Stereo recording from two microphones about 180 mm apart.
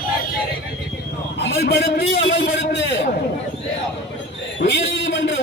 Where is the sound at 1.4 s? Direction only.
70° left (ahead or behind).